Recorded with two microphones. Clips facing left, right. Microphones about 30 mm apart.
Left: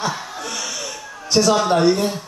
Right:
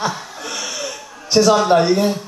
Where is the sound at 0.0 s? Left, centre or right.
Centre.